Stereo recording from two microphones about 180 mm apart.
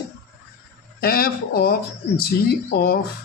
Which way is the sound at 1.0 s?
55° left (ahead or behind).